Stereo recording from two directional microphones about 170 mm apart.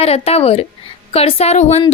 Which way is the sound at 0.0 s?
35° left (ahead or behind).